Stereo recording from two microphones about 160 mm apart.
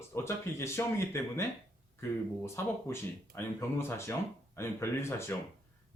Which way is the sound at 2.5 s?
15° left (ahead or behind).